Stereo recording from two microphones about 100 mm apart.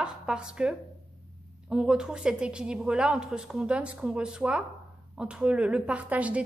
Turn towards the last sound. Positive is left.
turn(degrees=-15)  # may be behind; listen again after turning